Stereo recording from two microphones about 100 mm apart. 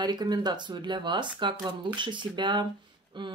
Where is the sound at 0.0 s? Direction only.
45° right (ahead or behind).